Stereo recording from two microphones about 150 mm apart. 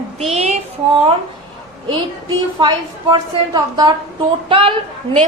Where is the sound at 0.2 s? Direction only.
45° right (ahead or behind).